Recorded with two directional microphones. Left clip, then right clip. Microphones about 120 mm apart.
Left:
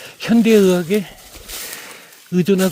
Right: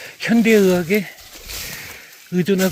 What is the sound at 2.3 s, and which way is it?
Speech, 45° left (ahead or behind).